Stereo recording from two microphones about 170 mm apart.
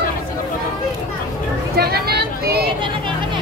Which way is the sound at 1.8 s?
65° right (ahead or behind).